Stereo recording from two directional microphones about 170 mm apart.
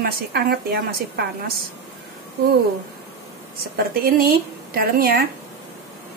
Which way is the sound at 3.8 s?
60° right (ahead or behind).